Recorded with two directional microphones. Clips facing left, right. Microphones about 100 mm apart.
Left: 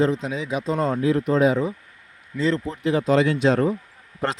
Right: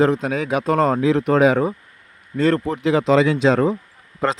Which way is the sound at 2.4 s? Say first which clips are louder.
Right 5 dB; 55° right (ahead or behind).